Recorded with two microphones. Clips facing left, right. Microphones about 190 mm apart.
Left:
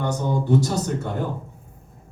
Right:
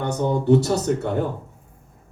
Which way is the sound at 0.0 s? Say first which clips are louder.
Right 2 dB; 60° right (ahead or behind).